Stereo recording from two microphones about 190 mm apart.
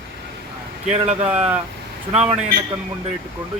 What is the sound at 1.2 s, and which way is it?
Speech, 10° right (ahead or behind).